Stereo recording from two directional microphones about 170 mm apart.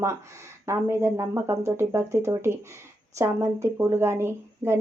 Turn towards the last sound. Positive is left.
turn(degrees=-15)  # may be behind; listen again after turning